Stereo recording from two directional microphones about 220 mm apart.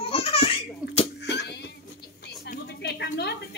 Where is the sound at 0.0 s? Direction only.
25° left (ahead or behind).